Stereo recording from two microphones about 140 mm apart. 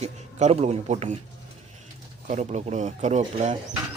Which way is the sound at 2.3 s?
55° right (ahead or behind).